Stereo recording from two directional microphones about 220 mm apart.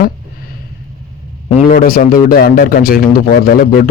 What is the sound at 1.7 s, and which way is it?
Speech, 40° left (ahead or behind).